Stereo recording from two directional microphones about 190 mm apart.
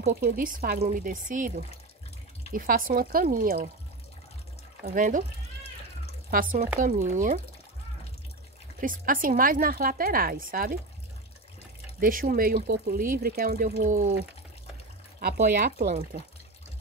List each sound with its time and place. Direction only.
0.1 s speech: 50° right (ahead or behind)
2.5 s speech: 45° right (ahead or behind)
4.8 s speech: 45° right (ahead or behind)
6.3 s speech: 45° right (ahead or behind)
8.8 s speech: 45° right (ahead or behind)
12.0 s speech: 45° right (ahead or behind)
15.1 s speech: 50° right (ahead or behind)